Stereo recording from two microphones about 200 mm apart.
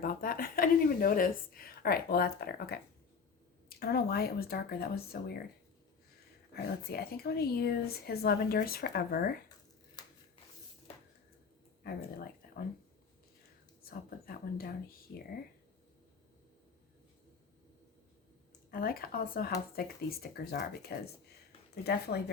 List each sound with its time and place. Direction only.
0.0 s a woman's voice: 45° left (ahead or behind)
6.5 s speech: 50° left (ahead or behind)
10.0 s a sound: 20° left (ahead or behind)
11.8 s speech: 50° left (ahead or behind)
13.8 s speech: 50° left (ahead or behind)
18.7 s speech: 45° left (ahead or behind)